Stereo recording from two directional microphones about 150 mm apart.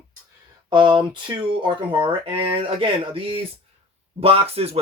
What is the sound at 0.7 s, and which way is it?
Speech, 30° right (ahead or behind).